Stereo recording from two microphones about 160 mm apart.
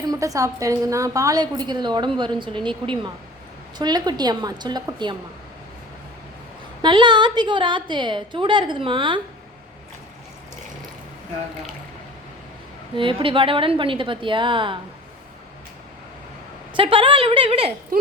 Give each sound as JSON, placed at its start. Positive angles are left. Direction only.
{"t": 0.1, "sound": "a woman's voice", "side_deg": -20}
{"t": 6.8, "sound": "a woman's voice", "side_deg": -30}
{"t": 13.0, "sound": "a woman's voice", "side_deg": -30}
{"t": 16.7, "sound": "a woman's voice", "side_deg": -30}